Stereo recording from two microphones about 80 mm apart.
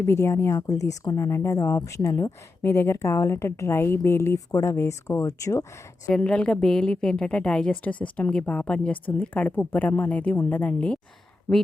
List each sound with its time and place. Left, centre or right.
0.0 s speech: left
0.7 s speech: left
2.6 s speech: left
4.4 s speech: left
6.1 s a woman's voice: centre